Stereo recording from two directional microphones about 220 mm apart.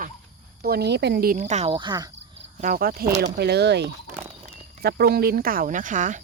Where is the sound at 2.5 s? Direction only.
35° right (ahead or behind).